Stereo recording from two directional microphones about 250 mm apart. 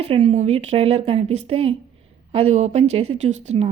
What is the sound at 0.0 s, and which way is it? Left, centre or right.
Speech, right.